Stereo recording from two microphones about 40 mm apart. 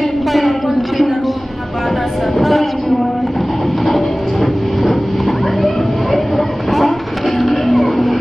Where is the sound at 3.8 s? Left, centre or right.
Centre.